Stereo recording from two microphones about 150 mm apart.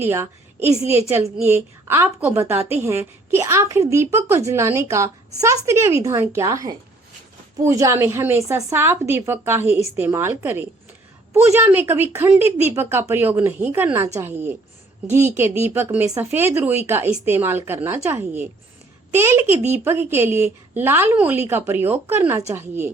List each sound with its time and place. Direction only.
0.0 s a woman's voice: 15° right (ahead or behind)